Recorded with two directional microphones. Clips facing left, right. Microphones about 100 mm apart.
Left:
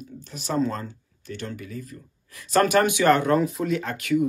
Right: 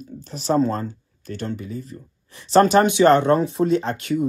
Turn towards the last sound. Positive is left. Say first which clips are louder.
# right 2 dB
turn(degrees=-30)  # may be behind; listen again after turning